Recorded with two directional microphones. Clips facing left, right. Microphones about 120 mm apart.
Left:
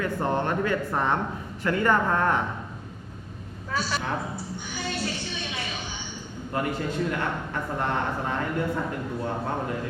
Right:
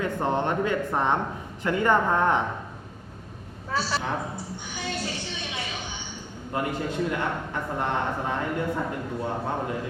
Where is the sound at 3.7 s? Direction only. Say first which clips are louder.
Right 1 dB; 30° right (ahead or behind).